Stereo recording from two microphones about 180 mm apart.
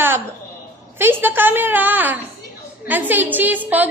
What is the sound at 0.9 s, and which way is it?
A woman's voice, 10° right (ahead or behind).